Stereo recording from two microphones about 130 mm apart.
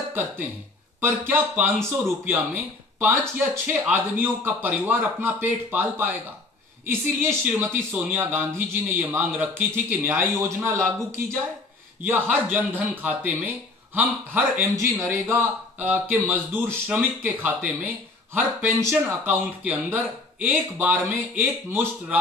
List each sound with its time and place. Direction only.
1.0 s speech: 15° right (ahead or behind)
12.0 s speech: 15° right (ahead or behind)